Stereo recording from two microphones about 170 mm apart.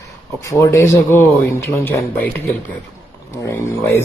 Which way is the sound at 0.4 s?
20° left (ahead or behind).